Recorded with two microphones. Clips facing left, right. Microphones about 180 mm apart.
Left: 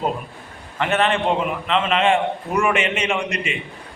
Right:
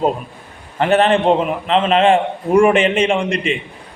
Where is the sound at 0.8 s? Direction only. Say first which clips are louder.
Right 6 dB; 35° right (ahead or behind).